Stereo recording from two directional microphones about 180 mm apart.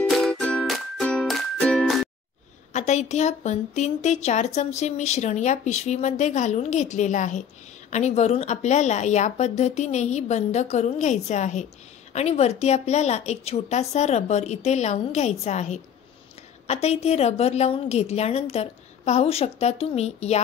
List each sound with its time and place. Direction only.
0.1 s music: centre (ahead or behind)
2.7 s a woman's voice: 40° left (ahead or behind)